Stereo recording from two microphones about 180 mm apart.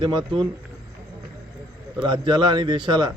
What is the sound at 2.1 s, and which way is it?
A man's voice, 25° right (ahead or behind).